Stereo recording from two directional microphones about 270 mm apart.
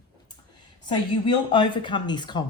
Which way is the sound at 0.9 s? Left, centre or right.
Centre.